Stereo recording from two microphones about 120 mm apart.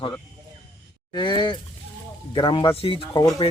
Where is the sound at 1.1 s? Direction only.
35° left (ahead or behind).